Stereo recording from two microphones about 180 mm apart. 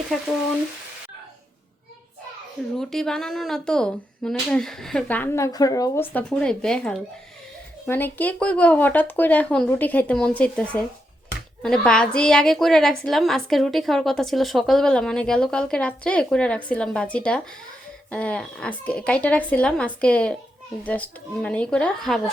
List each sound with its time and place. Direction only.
0.1 s a woman's voice: 5° left (ahead or behind)
2.7 s a woman's voice: 5° left (ahead or behind); by 6.1 s 20° left (ahead or behind)
6.1 s a woman's voice: 5° left (ahead or behind)